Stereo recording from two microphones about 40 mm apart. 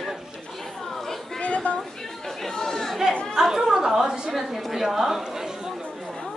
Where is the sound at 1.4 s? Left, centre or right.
Left.